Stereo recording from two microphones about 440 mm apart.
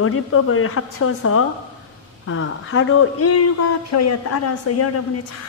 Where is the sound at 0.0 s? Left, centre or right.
Left.